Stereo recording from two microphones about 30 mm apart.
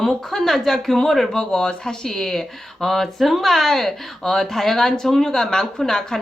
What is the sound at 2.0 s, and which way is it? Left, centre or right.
Speech, centre.